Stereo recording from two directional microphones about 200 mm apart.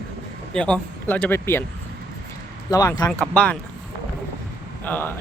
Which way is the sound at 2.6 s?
20° left (ahead or behind).